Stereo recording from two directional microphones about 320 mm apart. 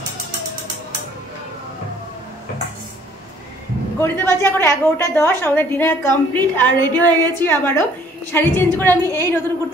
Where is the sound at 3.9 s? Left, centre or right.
Centre.